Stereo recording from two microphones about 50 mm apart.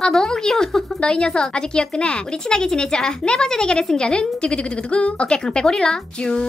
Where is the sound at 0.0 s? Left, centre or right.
Centre.